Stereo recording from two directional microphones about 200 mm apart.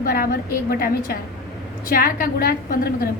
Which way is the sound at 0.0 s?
45° left (ahead or behind).